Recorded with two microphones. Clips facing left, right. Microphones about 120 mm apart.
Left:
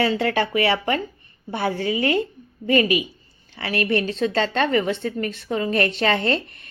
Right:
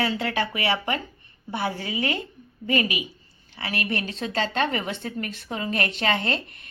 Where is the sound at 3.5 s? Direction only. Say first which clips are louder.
Left 7 dB; 40° left (ahead or behind).